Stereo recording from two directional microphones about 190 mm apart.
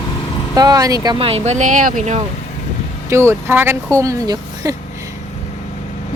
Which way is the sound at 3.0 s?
15° right (ahead or behind).